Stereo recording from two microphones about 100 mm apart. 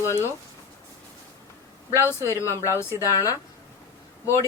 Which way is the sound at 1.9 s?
25° left (ahead or behind).